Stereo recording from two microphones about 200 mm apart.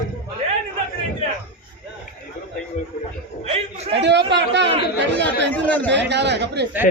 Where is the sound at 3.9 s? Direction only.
60° right (ahead or behind).